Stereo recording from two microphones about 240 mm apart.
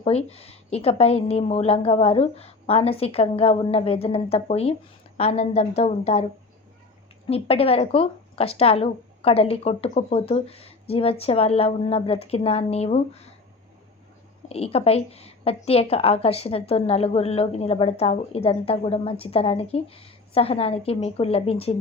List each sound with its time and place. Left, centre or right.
0.0 s a woman's voice: left
7.3 s a woman's voice: left
14.5 s a woman's voice: left